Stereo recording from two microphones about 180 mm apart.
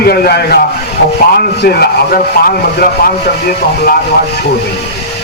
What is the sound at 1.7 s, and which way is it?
Speech, 60° left (ahead or behind).